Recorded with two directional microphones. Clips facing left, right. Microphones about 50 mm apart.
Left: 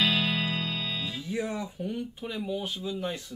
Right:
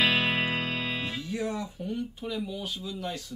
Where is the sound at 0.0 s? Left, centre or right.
Right.